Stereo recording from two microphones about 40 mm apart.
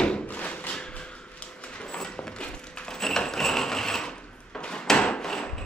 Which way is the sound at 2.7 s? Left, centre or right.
Centre.